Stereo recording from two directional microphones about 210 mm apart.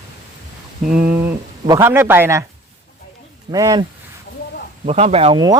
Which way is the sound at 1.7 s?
15° right (ahead or behind).